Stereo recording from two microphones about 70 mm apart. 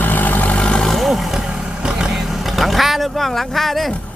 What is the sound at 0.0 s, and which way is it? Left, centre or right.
Vehicle, left.